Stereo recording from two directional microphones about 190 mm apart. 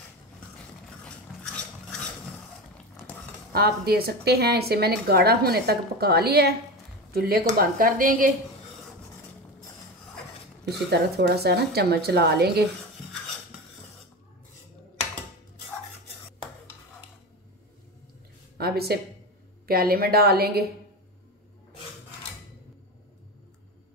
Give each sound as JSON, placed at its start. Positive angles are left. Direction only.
{"t": 1.0, "sound": "dishes", "side_deg": 5}
{"t": 3.5, "sound": "a woman's voice", "side_deg": -55}
{"t": 10.6, "sound": "a woman's voice", "side_deg": -60}
{"t": 18.6, "sound": "a sound", "side_deg": -55}
{"t": 19.7, "sound": "a woman's voice", "side_deg": -50}